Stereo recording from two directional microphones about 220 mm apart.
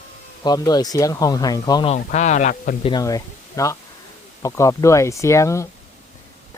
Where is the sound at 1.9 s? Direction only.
30° left (ahead or behind).